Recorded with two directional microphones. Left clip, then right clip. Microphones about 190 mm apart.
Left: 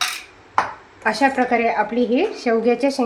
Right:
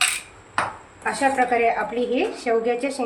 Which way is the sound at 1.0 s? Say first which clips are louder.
Left 3 dB; 55° left (ahead or behind).